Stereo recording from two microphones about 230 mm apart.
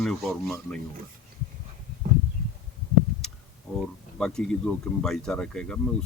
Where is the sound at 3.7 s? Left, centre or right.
Centre.